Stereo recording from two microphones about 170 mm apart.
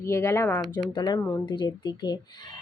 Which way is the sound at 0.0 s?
15° left (ahead or behind).